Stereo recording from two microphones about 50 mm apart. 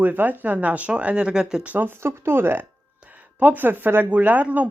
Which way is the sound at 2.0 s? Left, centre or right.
Right.